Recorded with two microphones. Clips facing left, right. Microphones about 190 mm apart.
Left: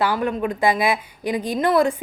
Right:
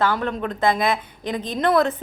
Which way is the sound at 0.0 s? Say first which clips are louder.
Left 1 dB; 10° left (ahead or behind).